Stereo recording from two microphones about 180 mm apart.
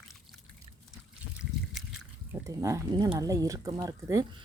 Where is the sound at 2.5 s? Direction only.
20° right (ahead or behind).